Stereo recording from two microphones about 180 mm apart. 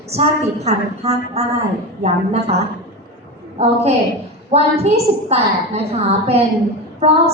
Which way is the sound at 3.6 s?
35° right (ahead or behind).